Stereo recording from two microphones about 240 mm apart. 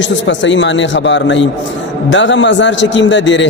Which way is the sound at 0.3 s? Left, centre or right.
Left.